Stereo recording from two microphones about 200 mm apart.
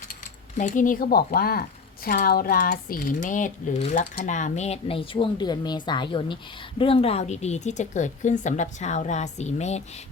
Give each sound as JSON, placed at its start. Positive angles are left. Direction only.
{"t": 0.1, "sound": "speech", "side_deg": 40}